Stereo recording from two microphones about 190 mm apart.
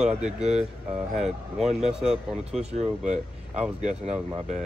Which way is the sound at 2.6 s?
35° right (ahead or behind).